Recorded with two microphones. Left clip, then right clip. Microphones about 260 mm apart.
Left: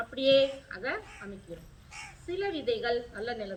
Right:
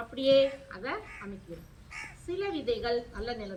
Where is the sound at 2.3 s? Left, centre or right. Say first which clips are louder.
Left 1 dB; centre.